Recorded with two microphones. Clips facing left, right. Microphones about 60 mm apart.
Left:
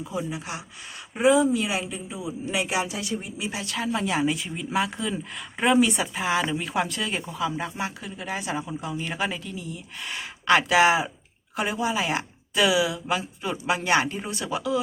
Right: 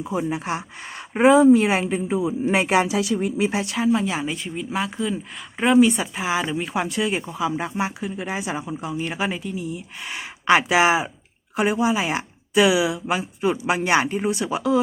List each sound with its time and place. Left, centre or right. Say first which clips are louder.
0.2 s a woman's voice: right 6 dB; right
3.7 s speech: right 7 dB; centre
3.9 s speech: right 1 dB; centre